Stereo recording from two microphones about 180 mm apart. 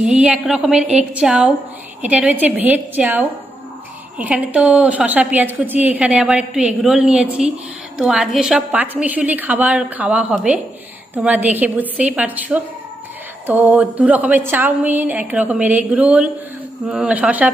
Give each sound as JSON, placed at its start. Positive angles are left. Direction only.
{"t": 0.0, "sound": "a woman's voice", "side_deg": -5}